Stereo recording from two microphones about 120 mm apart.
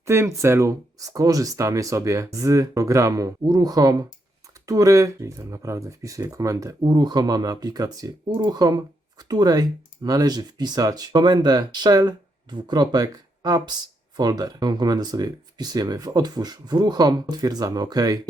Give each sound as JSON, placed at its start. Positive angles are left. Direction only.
{"t": 0.0, "sound": "speech", "side_deg": -20}